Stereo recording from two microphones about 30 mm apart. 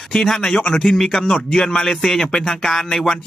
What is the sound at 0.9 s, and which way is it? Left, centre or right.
Speech, centre.